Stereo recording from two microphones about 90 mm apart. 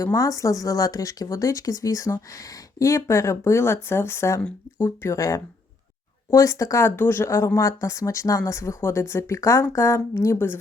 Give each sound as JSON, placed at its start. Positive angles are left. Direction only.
{"t": 0.0, "sound": "speech", "side_deg": 35}